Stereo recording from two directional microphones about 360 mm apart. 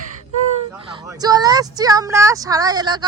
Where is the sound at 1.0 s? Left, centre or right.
Centre.